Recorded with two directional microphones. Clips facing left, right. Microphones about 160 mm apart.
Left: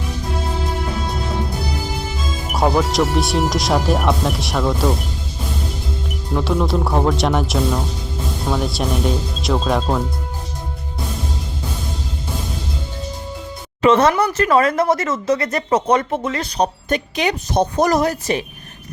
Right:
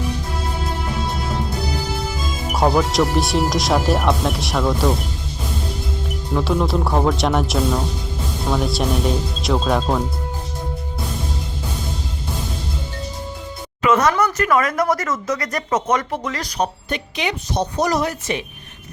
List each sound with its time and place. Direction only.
2.5 s speech: centre (ahead or behind)
6.3 s speech: centre (ahead or behind)
13.8 s speech: 30° left (ahead or behind)
16.9 s a woman's voice: 45° left (ahead or behind)